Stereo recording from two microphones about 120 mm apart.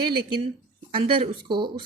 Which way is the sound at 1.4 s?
40° right (ahead or behind).